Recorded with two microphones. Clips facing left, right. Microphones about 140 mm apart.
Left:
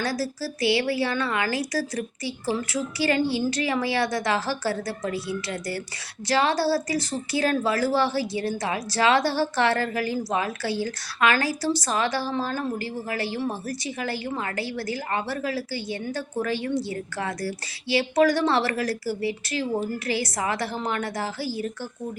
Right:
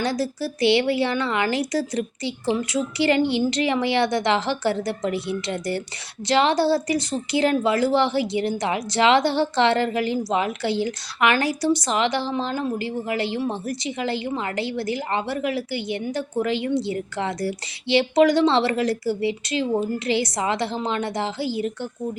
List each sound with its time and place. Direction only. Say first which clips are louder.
0.0 s a woman's voice: right 3 dB; 20° right (ahead or behind)